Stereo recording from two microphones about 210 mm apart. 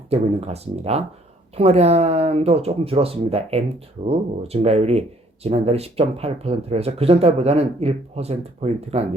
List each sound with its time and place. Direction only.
0.1 s speech: 30° right (ahead or behind)